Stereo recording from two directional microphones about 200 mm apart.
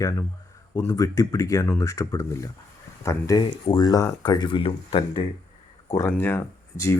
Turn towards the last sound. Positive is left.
turn(degrees=15)  # may be behind; listen again after turning